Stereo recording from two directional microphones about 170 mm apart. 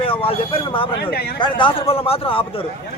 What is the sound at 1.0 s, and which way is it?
Speech, 65° left (ahead or behind).